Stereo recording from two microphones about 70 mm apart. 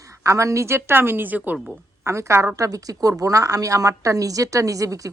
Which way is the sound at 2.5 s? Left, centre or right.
Right.